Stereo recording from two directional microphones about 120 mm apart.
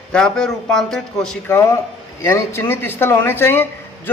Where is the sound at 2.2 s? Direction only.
20° left (ahead or behind).